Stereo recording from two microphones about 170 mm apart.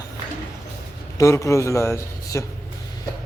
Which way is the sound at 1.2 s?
15° left (ahead or behind).